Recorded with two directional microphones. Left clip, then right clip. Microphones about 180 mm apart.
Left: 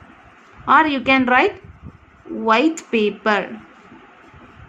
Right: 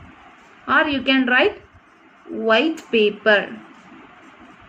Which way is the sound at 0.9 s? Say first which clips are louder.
Left 2 dB; 45° left (ahead or behind).